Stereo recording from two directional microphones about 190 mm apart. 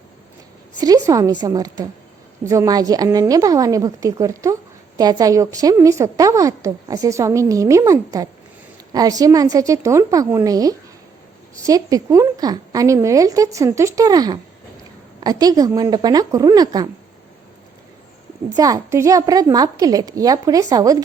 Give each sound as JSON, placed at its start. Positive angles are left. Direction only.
{"t": 0.8, "sound": "a woman's voice", "side_deg": -20}
{"t": 18.5, "sound": "a woman's voice", "side_deg": -20}